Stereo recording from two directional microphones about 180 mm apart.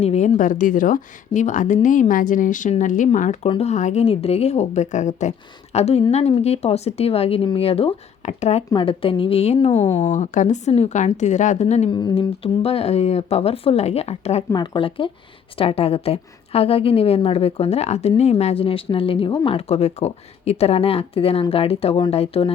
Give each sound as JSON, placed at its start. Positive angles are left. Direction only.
{"t": 0.0, "sound": "a woman's voice", "side_deg": 35}
{"t": 11.9, "sound": "a woman's voice", "side_deg": 25}
{"t": 14.5, "sound": "a woman's voice", "side_deg": 25}